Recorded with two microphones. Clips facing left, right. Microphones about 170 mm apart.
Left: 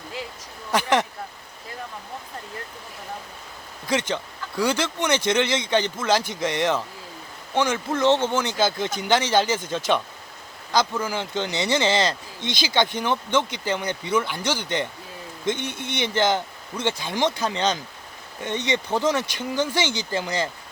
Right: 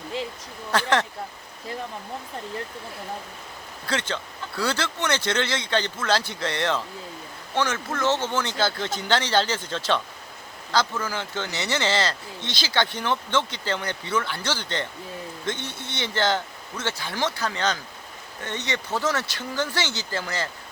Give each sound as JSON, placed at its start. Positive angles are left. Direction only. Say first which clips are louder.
{"t": 0.7, "sound": "speech", "louder": "left 2 dB", "side_deg": 15}
{"t": 3.8, "sound": "speech", "louder": "left 4 dB", "side_deg": 15}